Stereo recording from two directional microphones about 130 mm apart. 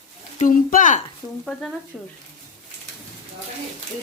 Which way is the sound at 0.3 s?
90° left.